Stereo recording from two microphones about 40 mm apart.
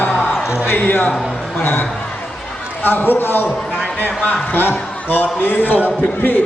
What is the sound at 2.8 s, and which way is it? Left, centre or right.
A man's voice, left.